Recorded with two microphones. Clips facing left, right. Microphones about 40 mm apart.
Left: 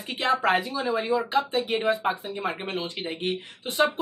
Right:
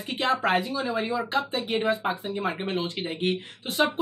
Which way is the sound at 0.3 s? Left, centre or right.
Centre.